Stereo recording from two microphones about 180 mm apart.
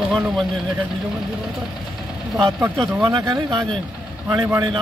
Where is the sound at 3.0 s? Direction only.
25° right (ahead or behind).